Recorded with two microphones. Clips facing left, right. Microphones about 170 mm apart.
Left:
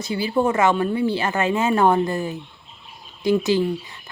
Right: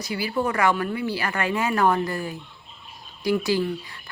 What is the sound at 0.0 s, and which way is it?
Speech, 25° left (ahead or behind).